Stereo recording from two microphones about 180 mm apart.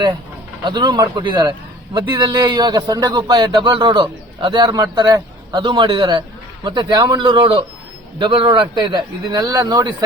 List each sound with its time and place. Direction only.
0.6 s a man's voice: 25° right (ahead or behind)